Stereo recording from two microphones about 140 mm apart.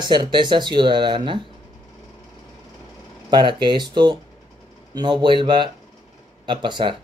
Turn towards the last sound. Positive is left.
turn(degrees=-35)  # may be behind; listen again after turning